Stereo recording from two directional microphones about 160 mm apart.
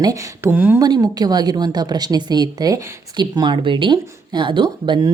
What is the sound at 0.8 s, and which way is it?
A woman's voice, 25° right (ahead or behind).